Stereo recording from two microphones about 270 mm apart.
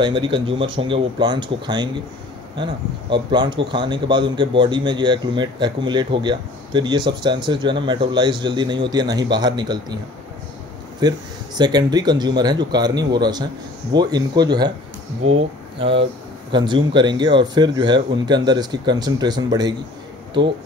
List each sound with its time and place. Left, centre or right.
0.0 s speech: centre
11.0 s speech: centre
15.8 s speech: centre